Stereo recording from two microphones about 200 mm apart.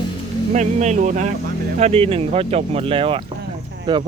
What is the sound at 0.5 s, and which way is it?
Speech, 35° right (ahead or behind).